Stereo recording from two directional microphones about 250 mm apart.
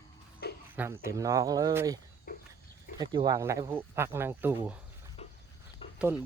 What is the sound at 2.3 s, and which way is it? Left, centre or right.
Pig, left.